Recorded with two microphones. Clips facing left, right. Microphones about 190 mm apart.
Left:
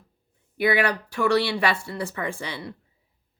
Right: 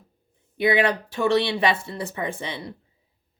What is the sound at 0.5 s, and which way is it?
A woman's voice, 20° right (ahead or behind).